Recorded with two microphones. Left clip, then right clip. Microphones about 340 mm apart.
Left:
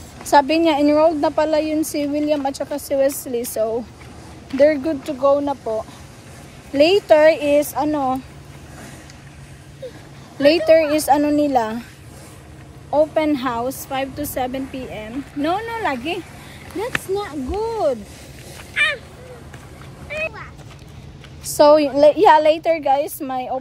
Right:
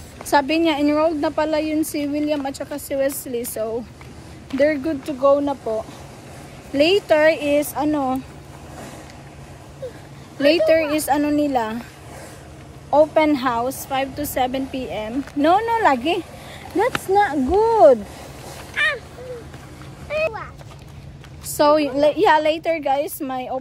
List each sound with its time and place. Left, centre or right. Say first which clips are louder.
0.2 s a woman's voice: left 3 dB; centre
7.1 s speech: left 3 dB; centre
10.4 s a woman's voice: left 2 dB; centre
12.9 s a woman's voice: right 2 dB; centre
17.1 s speech: right 7 dB; right
18.8 s vehicle: left 2 dB; centre
20.1 s a sound: right 4 dB; centre
21.5 s a woman's voice: left 4 dB; centre